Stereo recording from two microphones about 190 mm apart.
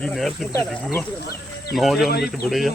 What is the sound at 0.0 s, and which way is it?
Speech, centre (ahead or behind).